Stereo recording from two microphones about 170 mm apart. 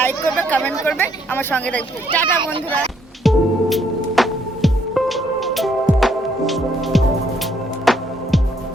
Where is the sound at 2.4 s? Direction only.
30° right (ahead or behind).